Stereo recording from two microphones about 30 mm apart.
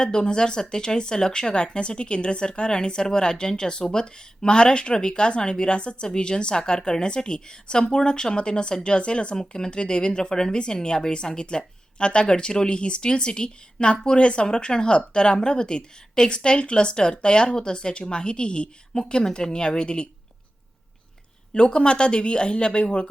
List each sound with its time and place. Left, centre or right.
0.0 s speech: left
14.2 s speech: left
14.4 s speech: left
21.5 s speech: left